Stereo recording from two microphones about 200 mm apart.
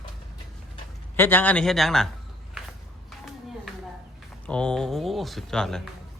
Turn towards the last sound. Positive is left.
turn(degrees=5)  # may be behind; listen again after turning